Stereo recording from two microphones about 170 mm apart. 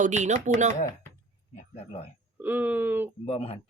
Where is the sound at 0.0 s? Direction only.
45° right (ahead or behind).